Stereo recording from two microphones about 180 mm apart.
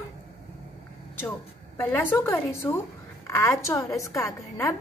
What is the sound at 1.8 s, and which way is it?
A woman's voice, 10° left (ahead or behind).